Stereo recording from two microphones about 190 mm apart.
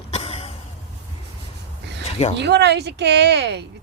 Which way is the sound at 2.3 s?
65° right (ahead or behind).